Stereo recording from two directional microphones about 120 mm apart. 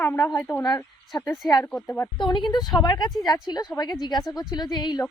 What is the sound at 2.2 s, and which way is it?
Speech, 40° left (ahead or behind).